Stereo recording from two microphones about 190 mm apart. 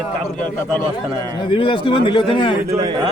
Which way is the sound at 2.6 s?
15° right (ahead or behind).